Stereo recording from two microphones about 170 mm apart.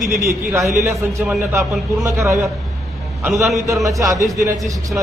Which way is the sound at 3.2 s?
Centre (ahead or behind).